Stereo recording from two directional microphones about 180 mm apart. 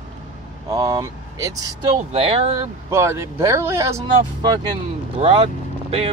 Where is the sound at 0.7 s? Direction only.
15° right (ahead or behind).